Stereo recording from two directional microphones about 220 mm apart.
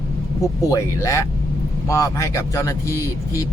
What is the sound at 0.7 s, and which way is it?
Speech, 15° left (ahead or behind).